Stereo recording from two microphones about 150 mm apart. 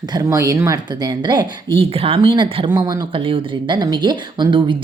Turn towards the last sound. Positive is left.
turn(degrees=-30)  # may be behind; listen again after turning